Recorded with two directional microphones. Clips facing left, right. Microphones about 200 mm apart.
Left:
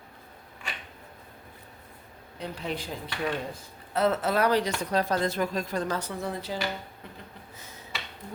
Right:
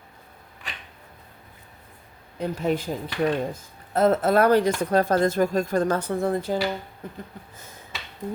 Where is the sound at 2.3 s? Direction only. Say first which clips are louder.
Right 9 dB; 45° right (ahead or behind).